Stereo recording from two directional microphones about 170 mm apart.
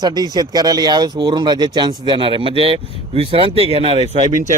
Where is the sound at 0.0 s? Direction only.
25° right (ahead or behind).